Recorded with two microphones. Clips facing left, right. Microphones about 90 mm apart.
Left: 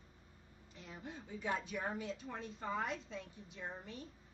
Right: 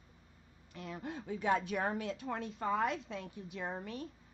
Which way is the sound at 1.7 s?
70° right (ahead or behind).